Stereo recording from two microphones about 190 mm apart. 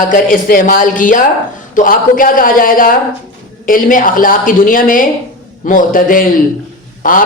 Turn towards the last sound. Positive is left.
turn(degrees=45)  # may be behind; listen again after turning